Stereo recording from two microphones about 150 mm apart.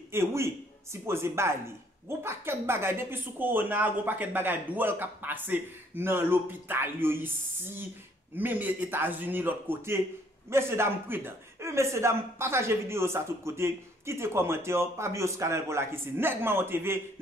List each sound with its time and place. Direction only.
0.1 s speech: 20° right (ahead or behind)